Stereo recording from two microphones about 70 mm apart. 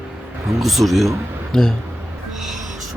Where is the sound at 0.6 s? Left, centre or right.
Centre.